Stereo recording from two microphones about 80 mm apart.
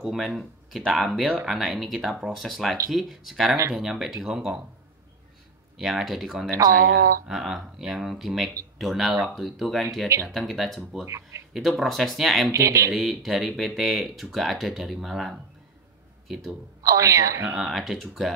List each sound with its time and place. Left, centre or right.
0.0 s speech: centre
5.8 s speech: centre
11.1 s speech: right
11.5 s speech: centre
12.5 s a woman's voice: right
12.9 s speech: centre
16.8 s a woman's voice: right
17.6 s speech: centre